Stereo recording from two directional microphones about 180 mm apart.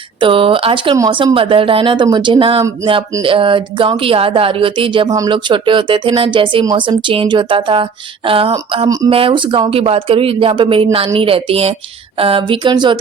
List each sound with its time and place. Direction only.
0.2 s speech: 30° right (ahead or behind)